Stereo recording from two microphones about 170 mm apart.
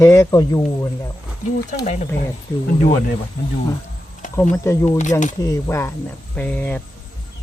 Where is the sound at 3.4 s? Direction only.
60° left (ahead or behind).